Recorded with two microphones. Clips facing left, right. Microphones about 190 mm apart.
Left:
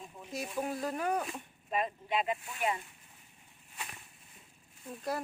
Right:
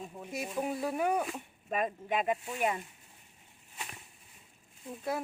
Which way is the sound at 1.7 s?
50° right (ahead or behind).